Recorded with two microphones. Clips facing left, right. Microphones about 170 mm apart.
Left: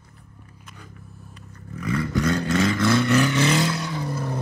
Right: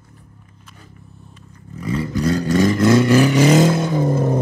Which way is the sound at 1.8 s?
25° right (ahead or behind).